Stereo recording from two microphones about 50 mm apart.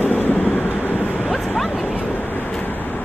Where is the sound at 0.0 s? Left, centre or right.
Left.